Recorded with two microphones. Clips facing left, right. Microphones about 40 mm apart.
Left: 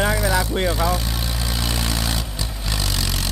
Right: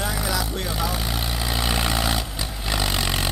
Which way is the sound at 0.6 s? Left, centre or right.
Centre.